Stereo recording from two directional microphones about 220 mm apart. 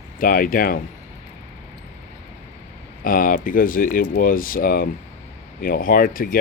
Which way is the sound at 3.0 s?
40° left (ahead or behind).